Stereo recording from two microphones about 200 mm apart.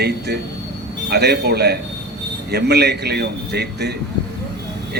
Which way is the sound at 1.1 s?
55° right (ahead or behind).